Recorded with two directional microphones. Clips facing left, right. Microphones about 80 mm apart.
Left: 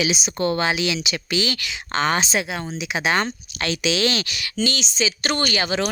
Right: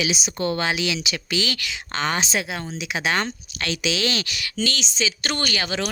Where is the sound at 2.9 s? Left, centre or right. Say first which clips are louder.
Left 2 dB; centre.